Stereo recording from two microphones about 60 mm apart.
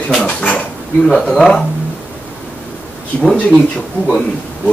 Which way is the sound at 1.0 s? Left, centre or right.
Centre.